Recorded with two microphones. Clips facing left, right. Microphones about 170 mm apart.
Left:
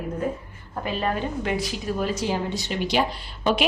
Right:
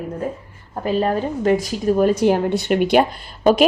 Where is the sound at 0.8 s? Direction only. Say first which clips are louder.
Right 7 dB; 40° right (ahead or behind).